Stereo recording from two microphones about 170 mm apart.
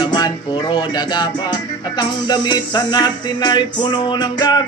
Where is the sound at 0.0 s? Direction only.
25° left (ahead or behind).